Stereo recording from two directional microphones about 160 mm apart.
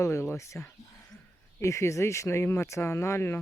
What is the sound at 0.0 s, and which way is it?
Speech, 15° left (ahead or behind).